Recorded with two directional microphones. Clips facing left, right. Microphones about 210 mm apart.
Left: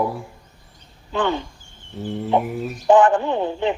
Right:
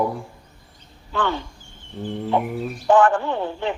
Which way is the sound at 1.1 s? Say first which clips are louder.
Left 3 dB; 20° left (ahead or behind).